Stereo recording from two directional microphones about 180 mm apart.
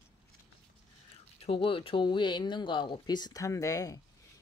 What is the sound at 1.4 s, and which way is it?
Speech, 30° left (ahead or behind).